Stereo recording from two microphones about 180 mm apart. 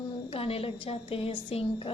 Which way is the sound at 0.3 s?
30° left (ahead or behind).